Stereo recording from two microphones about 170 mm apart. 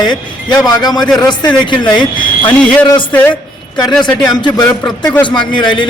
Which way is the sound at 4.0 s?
25° left (ahead or behind).